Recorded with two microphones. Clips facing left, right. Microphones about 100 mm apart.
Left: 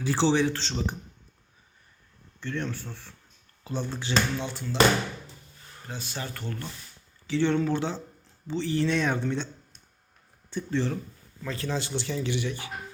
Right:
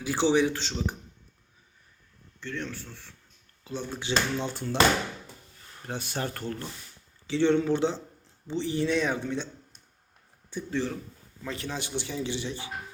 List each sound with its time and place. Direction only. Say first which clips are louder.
0.0 s speech: even; 10° right (ahead or behind)
2.4 s a man's voice: left 3 dB; centre (ahead or behind)
3.9 s speech: even; 15° right (ahead or behind)
4.4 s speech: right 2 dB; 40° right (ahead or behind)
5.9 s speech: right 4 dB; 60° right (ahead or behind); by 6.6 s 40° right (ahead or behind)
7.3 s speech: right 1 dB; 20° right (ahead or behind)
10.5 s a man's voice: left 2 dB; 5° right (ahead or behind)
11.4 s speech: left 3 dB; 20° right (ahead or behind)
12.3 s speech: left 3 dB; 25° right (ahead or behind)